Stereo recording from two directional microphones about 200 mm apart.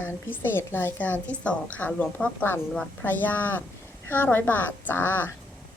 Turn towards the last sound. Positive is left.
turn(degrees=10)  # may be behind; listen again after turning